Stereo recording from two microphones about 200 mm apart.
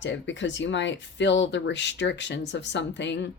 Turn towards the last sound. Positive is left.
turn(degrees=60)  # may be behind; listen again after turning